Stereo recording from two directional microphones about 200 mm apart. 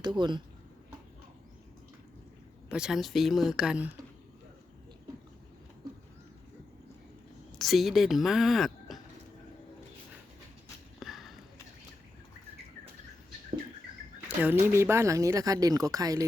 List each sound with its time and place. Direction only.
0.0 s speech: 20° right (ahead or behind)
2.6 s speech: 5° right (ahead or behind)
7.6 s a woman's voice: centre (ahead or behind)
11.0 s a sound: centre (ahead or behind)
14.3 s speech: 10° right (ahead or behind)